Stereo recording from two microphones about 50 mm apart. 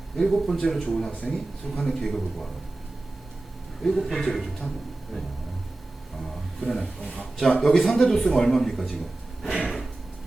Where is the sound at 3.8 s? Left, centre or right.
Centre.